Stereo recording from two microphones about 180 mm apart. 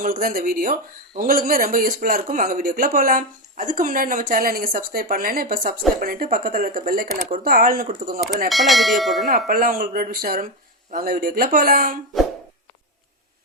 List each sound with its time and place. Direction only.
0.0 s speech: 50° right (ahead or behind)
8.4 s bell: centre (ahead or behind)
9.5 s speech: 55° right (ahead or behind)